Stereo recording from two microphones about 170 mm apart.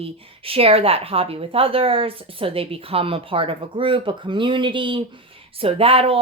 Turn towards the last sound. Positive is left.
turn(degrees=-35)  # may be behind; listen again after turning